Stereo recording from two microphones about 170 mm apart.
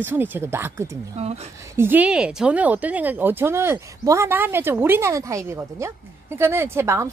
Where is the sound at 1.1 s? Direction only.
40° right (ahead or behind).